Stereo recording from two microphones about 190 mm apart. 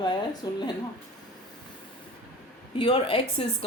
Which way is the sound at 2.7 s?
25° left (ahead or behind).